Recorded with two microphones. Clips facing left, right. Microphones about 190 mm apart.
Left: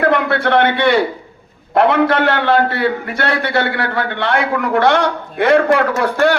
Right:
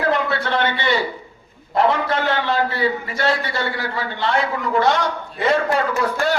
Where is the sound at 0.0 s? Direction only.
60° left (ahead or behind).